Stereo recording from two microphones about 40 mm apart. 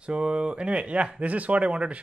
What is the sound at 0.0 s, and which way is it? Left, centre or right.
Speech, right.